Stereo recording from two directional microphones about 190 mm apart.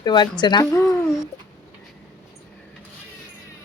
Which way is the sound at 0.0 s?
25° left (ahead or behind).